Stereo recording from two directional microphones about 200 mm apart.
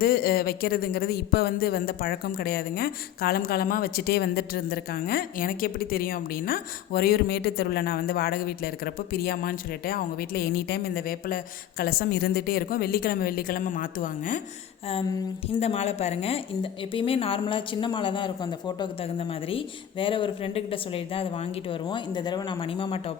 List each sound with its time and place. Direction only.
0.0 s speech: 45° left (ahead or behind)
15.6 s a woman's voice: 30° left (ahead or behind)
19.5 s a woman's voice: 25° left (ahead or behind)